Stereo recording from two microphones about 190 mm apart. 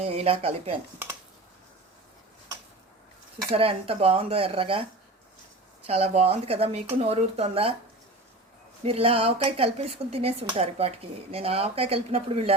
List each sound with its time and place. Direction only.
0.0 s speech: 30° right (ahead or behind)
3.5 s speech: 30° right (ahead or behind)
8.8 s speech: 30° right (ahead or behind)